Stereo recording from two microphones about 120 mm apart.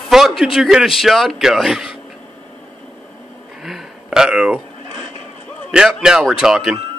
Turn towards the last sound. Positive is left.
turn(degrees=-5)  # may be behind; listen again after turning